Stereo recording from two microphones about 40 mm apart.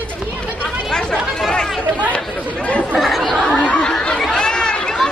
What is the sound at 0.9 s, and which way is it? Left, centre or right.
Speech, centre.